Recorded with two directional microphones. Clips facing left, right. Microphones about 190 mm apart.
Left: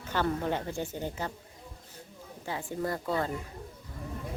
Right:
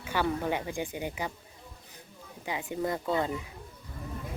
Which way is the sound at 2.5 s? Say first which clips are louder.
Right 1 dB; 20° right (ahead or behind).